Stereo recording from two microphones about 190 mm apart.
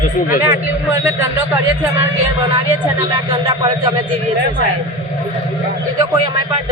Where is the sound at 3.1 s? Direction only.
25° right (ahead or behind).